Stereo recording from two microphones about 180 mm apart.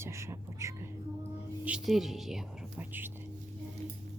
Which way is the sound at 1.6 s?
5° right (ahead or behind).